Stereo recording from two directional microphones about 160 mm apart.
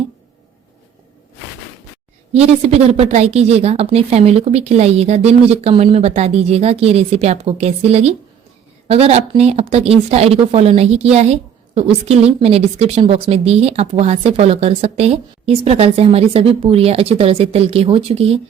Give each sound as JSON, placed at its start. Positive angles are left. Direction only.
{"t": 2.3, "sound": "a woman's voice", "side_deg": -40}